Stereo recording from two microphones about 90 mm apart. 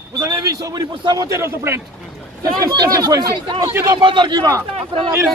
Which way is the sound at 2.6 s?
45° right (ahead or behind).